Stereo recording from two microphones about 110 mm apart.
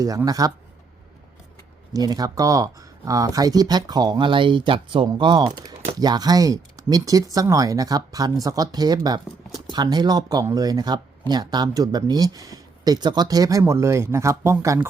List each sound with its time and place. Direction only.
0.3 s speech: 35° right (ahead or behind)
1.9 s speech: 35° right (ahead or behind)